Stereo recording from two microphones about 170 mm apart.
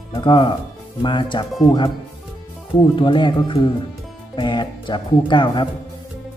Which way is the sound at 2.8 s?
30° left (ahead or behind).